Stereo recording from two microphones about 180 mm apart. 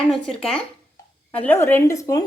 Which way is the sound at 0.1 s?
5° left (ahead or behind).